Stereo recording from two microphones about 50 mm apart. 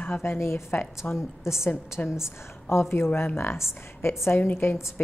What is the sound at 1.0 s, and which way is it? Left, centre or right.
A woman's voice, left.